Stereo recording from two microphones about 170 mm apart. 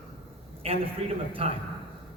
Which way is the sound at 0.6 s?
35° right (ahead or behind).